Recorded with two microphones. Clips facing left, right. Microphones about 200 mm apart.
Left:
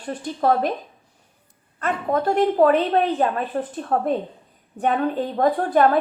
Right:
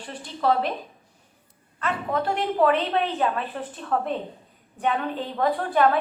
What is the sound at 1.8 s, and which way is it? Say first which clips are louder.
A woman's voice: left 4 dB; 45° left (ahead or behind).